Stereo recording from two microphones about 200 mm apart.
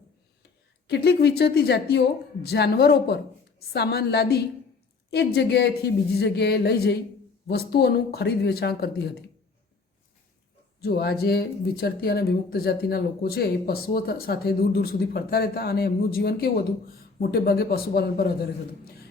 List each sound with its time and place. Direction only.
0.9 s speech: 55° left (ahead or behind)
10.8 s speech: 50° left (ahead or behind)